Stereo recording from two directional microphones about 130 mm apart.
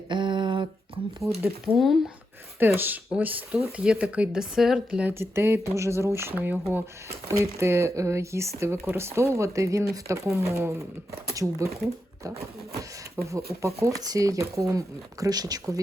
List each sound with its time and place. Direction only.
0.1 s a sound: 35° right (ahead or behind)
1.6 s speech: centre (ahead or behind)
2.6 s speech: 15° right (ahead or behind)
5.1 s speech: 20° right (ahead or behind)
13.2 s speech: 25° right (ahead or behind)